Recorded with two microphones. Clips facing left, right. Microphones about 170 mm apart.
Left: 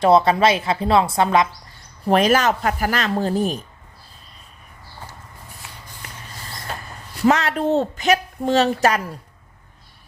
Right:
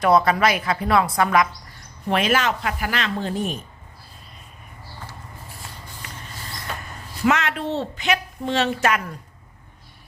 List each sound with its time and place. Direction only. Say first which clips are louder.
0.0 s a woman's voice: left 3 dB; 25° left (ahead or behind)
2.0 s a woman's voice: left 5 dB; 40° left (ahead or behind)
7.3 s a woman's voice: left 4 dB; 35° left (ahead or behind)